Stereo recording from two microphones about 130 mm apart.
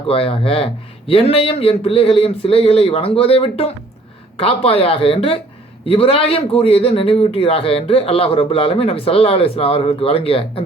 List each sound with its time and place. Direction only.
0.1 s a man's voice: 45° left (ahead or behind)